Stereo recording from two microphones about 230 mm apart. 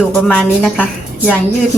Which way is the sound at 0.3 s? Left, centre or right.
Centre.